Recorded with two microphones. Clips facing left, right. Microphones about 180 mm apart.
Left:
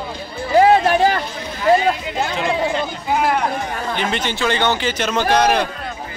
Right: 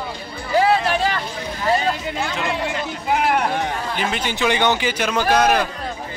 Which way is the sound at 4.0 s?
10° right (ahead or behind).